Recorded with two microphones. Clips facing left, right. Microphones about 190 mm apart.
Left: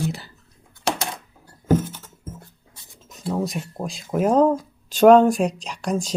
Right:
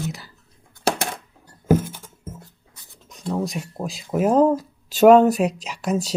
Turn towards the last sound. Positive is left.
turn(degrees=-5)  # may be behind; listen again after turning